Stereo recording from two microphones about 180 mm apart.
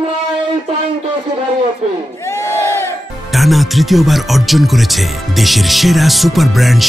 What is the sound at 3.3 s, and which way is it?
Speech, centre (ahead or behind).